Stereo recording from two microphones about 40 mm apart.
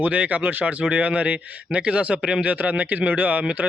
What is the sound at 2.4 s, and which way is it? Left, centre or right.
Speech, right.